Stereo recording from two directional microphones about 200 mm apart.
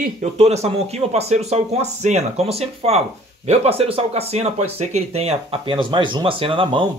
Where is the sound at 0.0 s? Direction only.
35° right (ahead or behind).